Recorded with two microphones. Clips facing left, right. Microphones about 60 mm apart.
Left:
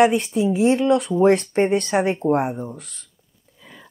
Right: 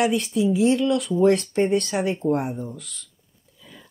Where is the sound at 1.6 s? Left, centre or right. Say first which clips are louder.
Left 3 dB; left.